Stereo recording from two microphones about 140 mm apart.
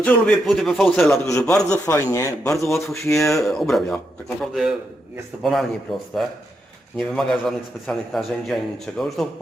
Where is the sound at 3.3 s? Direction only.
Centre (ahead or behind).